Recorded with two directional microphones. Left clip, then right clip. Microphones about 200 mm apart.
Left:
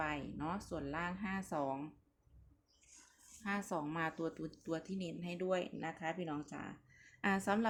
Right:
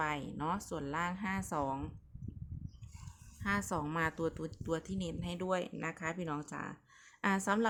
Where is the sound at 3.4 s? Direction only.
25° right (ahead or behind).